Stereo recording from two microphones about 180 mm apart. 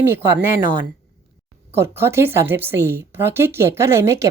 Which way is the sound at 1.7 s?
15° right (ahead or behind).